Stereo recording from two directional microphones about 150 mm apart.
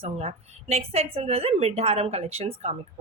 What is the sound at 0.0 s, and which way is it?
A woman's voice, 45° right (ahead or behind).